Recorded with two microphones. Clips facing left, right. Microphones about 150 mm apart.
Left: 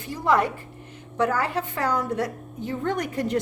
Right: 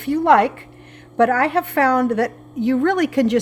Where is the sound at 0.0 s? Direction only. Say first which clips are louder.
Right 8 dB; 65° right (ahead or behind).